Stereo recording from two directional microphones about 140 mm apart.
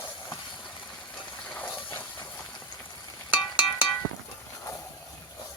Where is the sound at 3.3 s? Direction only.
35° left (ahead or behind).